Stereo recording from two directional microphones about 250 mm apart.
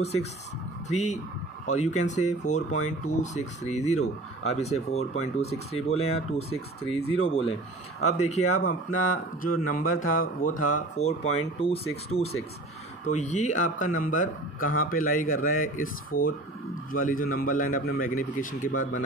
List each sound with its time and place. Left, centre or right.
0.8 s speech: left
8.0 s speech: left
8.5 s speech: left